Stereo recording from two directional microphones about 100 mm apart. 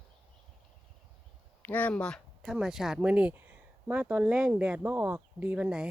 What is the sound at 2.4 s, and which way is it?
Speech, 5° right (ahead or behind).